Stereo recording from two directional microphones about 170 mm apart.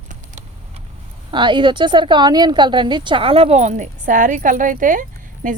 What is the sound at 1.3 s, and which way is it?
A woman's voice, 25° right (ahead or behind).